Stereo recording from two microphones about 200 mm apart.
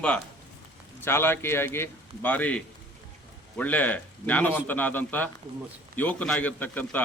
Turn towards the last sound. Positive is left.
turn(degrees=10)  # may be behind; listen again after turning